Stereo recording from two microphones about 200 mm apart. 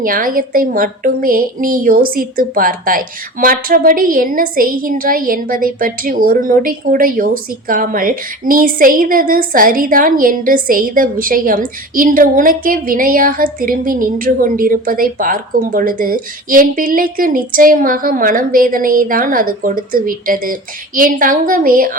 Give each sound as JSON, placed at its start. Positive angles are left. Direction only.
{"t": 0.0, "sound": "a woman's voice", "side_deg": -45}